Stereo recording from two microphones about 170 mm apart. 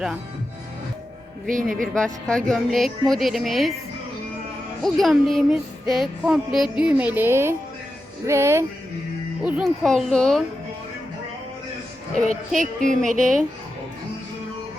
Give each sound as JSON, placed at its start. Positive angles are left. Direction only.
{"t": 1.5, "sound": "music", "side_deg": -50}
{"t": 1.8, "sound": "speech", "side_deg": 5}
{"t": 4.8, "sound": "speech", "side_deg": 0}
{"t": 9.4, "sound": "speech", "side_deg": -5}
{"t": 12.5, "sound": "music", "side_deg": -50}